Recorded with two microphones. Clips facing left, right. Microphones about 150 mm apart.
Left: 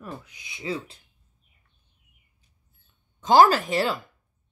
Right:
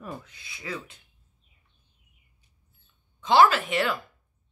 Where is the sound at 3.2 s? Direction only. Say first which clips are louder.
Left 2 dB; 40° left (ahead or behind).